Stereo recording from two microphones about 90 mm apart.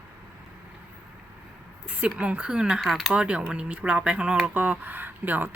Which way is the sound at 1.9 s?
15° right (ahead or behind).